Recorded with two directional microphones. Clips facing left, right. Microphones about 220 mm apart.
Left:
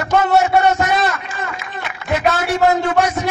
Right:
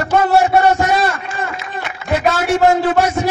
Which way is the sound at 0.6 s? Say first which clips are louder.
Right 2 dB; 30° right (ahead or behind).